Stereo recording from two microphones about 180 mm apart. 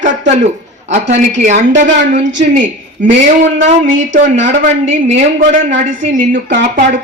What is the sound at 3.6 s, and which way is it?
Speech, 45° right (ahead or behind).